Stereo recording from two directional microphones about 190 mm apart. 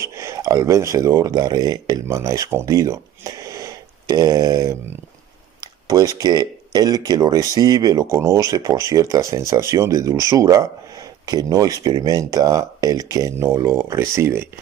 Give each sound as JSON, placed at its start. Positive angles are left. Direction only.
{"t": 0.0, "sound": "speech", "side_deg": -15}